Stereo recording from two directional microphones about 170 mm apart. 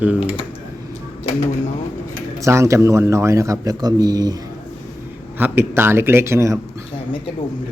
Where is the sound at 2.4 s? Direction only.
15° right (ahead or behind).